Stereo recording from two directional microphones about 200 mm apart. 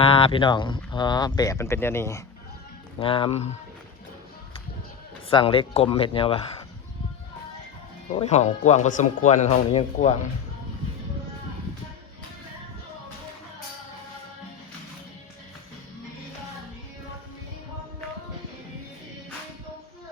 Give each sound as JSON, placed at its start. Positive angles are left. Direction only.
{"t": 0.0, "sound": "speech", "side_deg": 25}
{"t": 3.0, "sound": "speech", "side_deg": 25}
{"t": 5.3, "sound": "speech", "side_deg": 25}
{"t": 8.1, "sound": "speech", "side_deg": 35}